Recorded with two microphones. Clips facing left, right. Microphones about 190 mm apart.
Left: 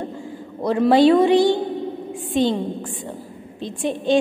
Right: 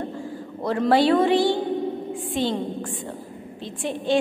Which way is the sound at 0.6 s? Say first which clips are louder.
Left 4 dB; 15° left (ahead or behind).